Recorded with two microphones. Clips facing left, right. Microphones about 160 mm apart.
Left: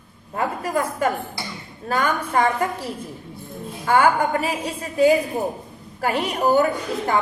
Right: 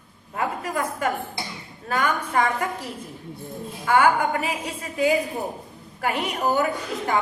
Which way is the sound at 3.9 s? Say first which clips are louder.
Left 2 dB; 35° left (ahead or behind).